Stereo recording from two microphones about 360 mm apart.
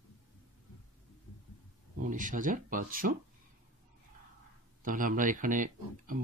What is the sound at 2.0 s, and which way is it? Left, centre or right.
Speech, right.